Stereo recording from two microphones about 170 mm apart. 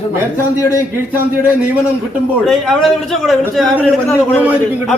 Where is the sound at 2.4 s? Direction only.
Centre (ahead or behind).